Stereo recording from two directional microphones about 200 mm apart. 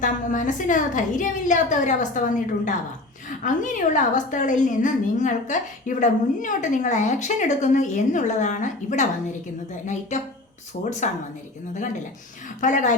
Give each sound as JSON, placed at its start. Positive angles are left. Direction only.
{"t": 0.0, "sound": "a woman's voice", "side_deg": 40}
{"t": 12.6, "sound": "a woman's voice", "side_deg": 40}